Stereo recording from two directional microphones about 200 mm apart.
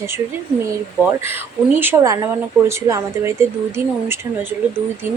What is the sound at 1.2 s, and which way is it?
A woman's voice, 10° right (ahead or behind).